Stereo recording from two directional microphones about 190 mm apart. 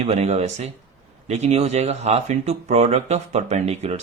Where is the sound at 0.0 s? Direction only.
35° right (ahead or behind).